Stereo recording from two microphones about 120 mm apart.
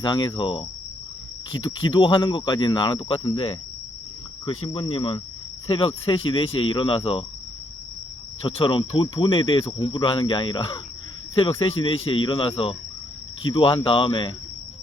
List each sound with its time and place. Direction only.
0.0 s speech: 40° left (ahead or behind)
8.4 s speech: 45° left (ahead or behind)